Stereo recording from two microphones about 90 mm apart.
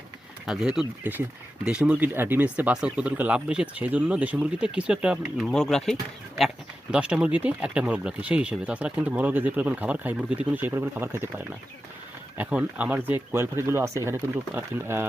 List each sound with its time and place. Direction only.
0.4 s speech: 5° right (ahead or behind)
1.1 s speech: 20° right (ahead or behind); by 6.5 s 5° left (ahead or behind)
6.9 s speech: 10° right (ahead or behind)
12.4 s speech: 15° right (ahead or behind)